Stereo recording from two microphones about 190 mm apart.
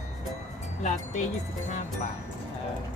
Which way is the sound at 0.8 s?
40° left (ahead or behind).